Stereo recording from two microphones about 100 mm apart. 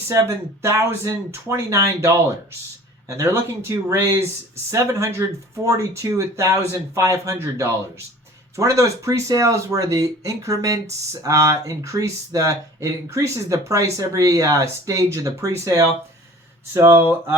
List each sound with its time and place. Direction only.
0.1 s speech: 30° right (ahead or behind)